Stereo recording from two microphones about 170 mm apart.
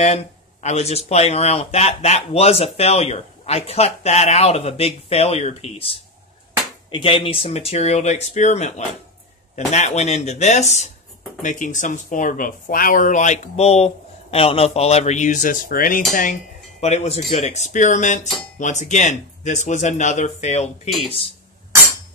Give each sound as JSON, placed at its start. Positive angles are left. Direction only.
{"t": 0.0, "sound": "speech", "side_deg": 40}
{"t": 16.8, "sound": "speech", "side_deg": 40}